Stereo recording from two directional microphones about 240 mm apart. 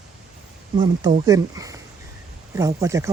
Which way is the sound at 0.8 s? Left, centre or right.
Centre.